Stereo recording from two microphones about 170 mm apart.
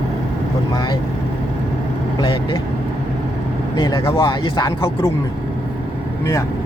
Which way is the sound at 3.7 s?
25° left (ahead or behind).